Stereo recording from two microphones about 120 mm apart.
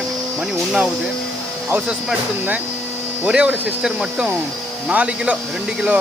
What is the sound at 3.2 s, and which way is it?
Speech, 10° right (ahead or behind).